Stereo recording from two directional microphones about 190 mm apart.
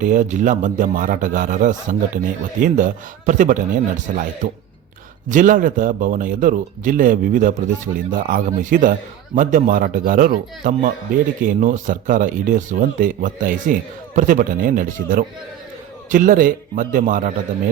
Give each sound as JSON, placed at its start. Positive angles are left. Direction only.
{"t": 0.0, "sound": "a man's voice", "side_deg": -40}
{"t": 5.3, "sound": "a man's voice", "side_deg": -45}